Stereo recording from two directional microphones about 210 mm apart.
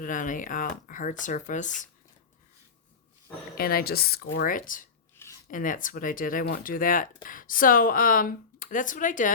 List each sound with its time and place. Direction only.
0.0 s speech: 40° left (ahead or behind)
3.6 s speech: 45° left (ahead or behind)